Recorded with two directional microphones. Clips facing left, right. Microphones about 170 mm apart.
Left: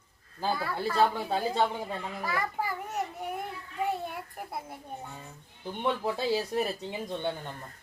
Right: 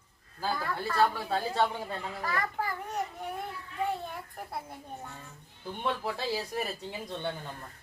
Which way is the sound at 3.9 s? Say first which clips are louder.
Left 2 dB; 10° left (ahead or behind).